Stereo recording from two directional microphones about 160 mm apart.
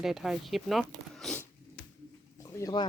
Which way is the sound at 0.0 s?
Centre (ahead or behind).